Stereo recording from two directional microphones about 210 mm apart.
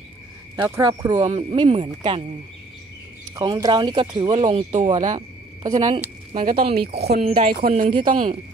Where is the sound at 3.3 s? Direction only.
20° right (ahead or behind).